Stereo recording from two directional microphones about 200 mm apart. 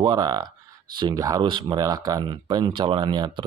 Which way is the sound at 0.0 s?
20° right (ahead or behind).